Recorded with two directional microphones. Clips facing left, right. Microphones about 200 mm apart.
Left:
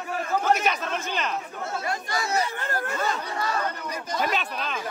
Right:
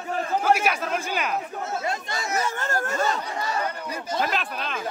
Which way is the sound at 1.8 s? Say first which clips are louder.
Even; 25° right (ahead or behind).